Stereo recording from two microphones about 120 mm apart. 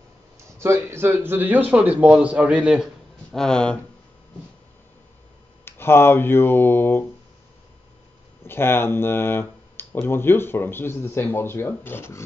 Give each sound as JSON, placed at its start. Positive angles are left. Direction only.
{"t": 0.6, "sound": "a man's voice", "side_deg": -20}
{"t": 3.3, "sound": "speech", "side_deg": 5}
{"t": 5.7, "sound": "speech", "side_deg": 20}
{"t": 8.5, "sound": "speech", "side_deg": 20}